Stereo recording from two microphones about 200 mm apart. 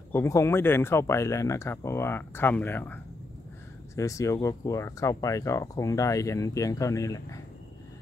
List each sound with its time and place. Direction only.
0.1 s speech: 15° left (ahead or behind)